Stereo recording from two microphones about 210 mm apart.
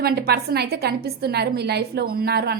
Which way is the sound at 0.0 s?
50° right (ahead or behind).